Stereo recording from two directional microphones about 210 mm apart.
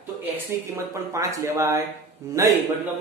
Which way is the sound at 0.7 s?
15° right (ahead or behind).